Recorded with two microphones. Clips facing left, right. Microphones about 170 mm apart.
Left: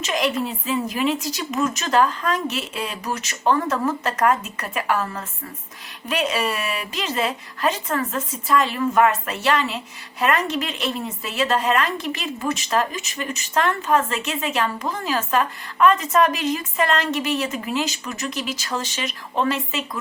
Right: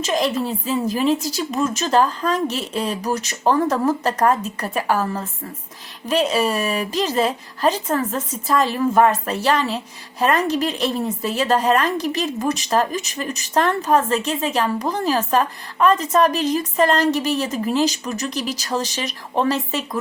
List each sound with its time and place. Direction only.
0.0 s speech: 30° right (ahead or behind)